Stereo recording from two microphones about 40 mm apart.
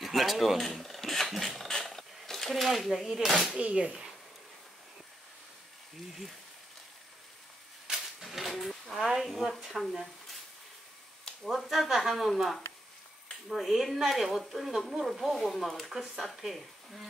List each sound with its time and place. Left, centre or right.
0.0 s speech: centre
1.5 s a sound: centre
1.8 s mechanisms: centre
3.6 s speech: right
7.9 s a sound: centre
8.6 s speech: centre
11.4 s speech: centre